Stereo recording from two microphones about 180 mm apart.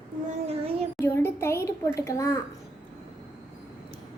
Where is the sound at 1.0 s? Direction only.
15° left (ahead or behind).